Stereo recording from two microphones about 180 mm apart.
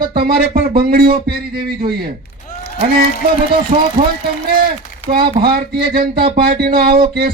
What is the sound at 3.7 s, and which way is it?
Speech, 35° right (ahead or behind).